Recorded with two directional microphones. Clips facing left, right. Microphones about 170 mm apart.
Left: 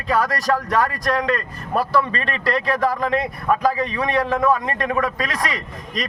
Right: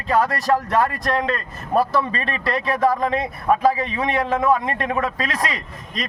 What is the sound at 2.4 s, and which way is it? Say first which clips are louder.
A man's voice: right 1 dB; 25° right (ahead or behind).